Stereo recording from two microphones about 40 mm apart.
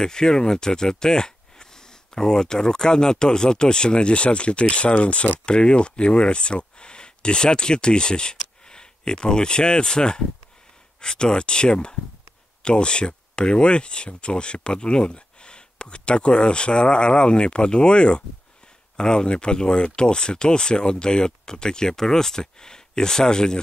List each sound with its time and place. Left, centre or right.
0.0 s speech: centre